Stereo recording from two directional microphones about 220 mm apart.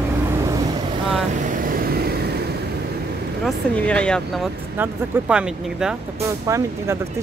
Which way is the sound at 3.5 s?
5° left (ahead or behind).